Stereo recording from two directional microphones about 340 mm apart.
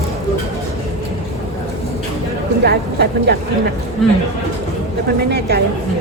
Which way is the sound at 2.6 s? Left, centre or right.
Right.